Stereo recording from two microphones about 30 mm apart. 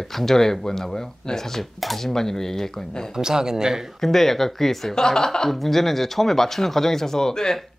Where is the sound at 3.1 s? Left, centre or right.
Right.